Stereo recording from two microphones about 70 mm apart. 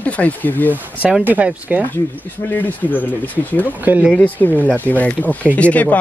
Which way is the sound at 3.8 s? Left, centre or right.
Right.